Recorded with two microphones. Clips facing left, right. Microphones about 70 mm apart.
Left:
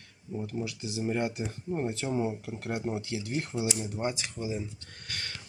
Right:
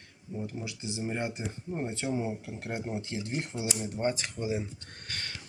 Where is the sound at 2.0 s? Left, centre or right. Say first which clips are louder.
Right 3 dB; centre.